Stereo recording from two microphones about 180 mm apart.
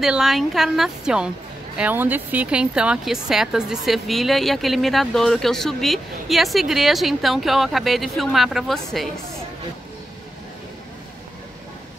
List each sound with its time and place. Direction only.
0.0 s a woman's voice: centre (ahead or behind)